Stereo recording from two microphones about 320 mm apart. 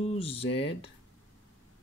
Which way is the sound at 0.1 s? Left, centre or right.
Centre.